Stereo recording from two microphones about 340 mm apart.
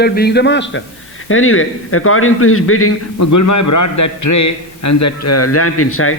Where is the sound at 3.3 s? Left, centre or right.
Left.